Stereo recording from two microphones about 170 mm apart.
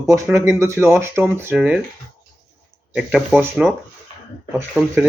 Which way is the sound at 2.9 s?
5° right (ahead or behind).